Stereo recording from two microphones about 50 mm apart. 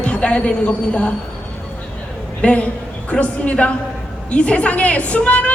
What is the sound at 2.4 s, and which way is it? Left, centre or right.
A man's voice, left.